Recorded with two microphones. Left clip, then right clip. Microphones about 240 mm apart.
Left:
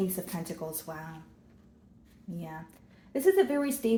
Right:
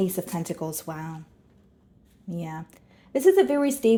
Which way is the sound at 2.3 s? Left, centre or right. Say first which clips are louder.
Right 7 dB; right.